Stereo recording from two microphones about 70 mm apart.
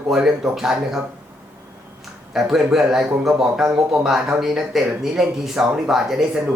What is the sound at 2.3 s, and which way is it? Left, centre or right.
Speech, centre.